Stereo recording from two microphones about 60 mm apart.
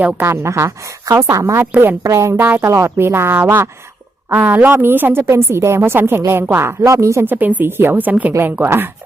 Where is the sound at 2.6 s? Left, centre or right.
Right.